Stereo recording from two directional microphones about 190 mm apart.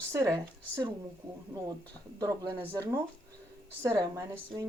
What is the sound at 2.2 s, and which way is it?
Speech, 15° right (ahead or behind).